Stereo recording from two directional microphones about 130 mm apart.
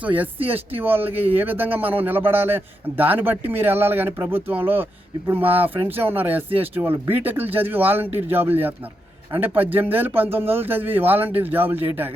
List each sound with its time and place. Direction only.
0.0 s a man's voice: 10° right (ahead or behind)